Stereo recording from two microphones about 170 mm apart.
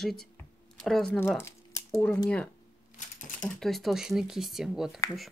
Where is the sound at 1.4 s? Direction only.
15° left (ahead or behind).